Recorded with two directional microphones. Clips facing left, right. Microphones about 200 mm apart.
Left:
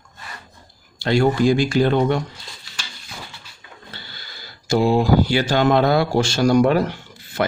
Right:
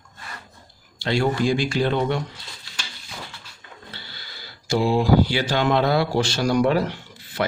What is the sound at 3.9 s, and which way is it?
Speech, 50° left (ahead or behind).